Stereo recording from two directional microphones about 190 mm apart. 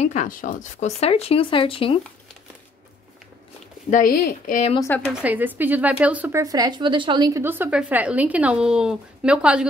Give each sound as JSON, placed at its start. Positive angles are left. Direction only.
{"t": 0.0, "sound": "speech", "side_deg": 40}
{"t": 3.9, "sound": "a woman's voice", "side_deg": 45}
{"t": 4.7, "sound": "speech", "side_deg": 10}
{"t": 5.1, "sound": "speech", "side_deg": -10}